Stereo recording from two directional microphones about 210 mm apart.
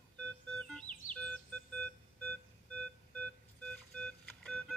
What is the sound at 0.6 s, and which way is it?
Music, 5° left (ahead or behind).